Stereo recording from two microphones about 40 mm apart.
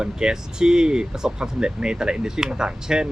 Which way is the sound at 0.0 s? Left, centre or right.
Centre.